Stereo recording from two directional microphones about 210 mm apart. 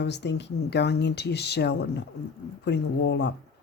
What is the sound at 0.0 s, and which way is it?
Speech, 55° left (ahead or behind).